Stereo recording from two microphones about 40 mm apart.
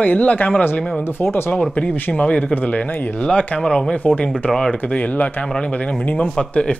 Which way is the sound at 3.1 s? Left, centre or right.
Left.